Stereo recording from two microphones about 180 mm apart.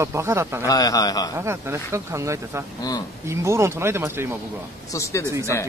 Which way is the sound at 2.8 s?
20° left (ahead or behind).